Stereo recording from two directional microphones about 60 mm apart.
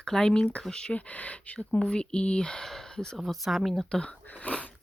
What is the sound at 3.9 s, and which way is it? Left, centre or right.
Speech, centre.